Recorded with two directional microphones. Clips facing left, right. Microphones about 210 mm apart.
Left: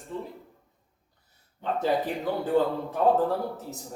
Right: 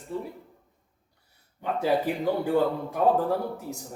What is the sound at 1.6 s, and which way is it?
Speech, 10° right (ahead or behind).